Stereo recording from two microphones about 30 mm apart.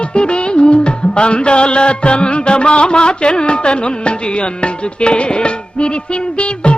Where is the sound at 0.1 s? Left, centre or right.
Left.